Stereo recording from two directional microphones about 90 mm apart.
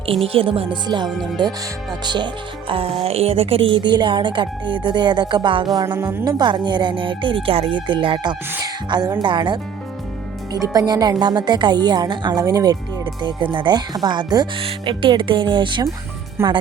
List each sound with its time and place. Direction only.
0.0 s speech: 90° right
0.9 s speech: 55° right (ahead or behind)
5.7 s speech: 45° right (ahead or behind)
6.2 s speech: 55° right (ahead or behind)
8.6 s speech: 50° right (ahead or behind)
10.5 s speech: 45° right (ahead or behind)
13.2 s speech: 65° right (ahead or behind)
14.6 s speech: 75° right (ahead or behind)
16.4 s speech: 25° right (ahead or behind)